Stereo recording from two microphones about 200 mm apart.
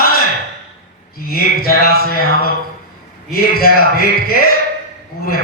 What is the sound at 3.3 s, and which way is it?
Speech, 50° left (ahead or behind).